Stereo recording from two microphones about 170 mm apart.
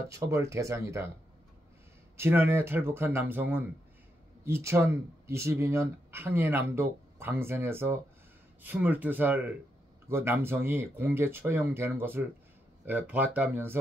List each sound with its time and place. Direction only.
0.1 s speech: 15° right (ahead or behind)
2.1 s speech: 15° right (ahead or behind)